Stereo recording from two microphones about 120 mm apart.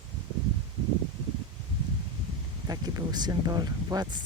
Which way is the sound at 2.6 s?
35° right (ahead or behind).